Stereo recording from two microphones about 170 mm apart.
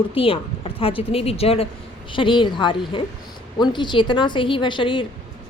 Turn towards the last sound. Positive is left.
turn(degrees=30)  # may be behind; listen again after turning